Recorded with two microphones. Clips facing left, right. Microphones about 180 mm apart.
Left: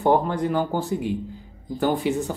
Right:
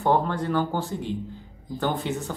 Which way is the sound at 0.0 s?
15° left (ahead or behind).